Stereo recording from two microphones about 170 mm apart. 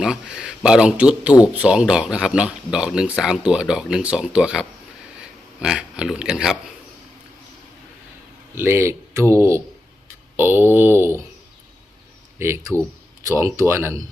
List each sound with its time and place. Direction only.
0.0 s speech: 5° right (ahead or behind)
8.5 s speech: 15° right (ahead or behind)
12.4 s speech: 15° right (ahead or behind)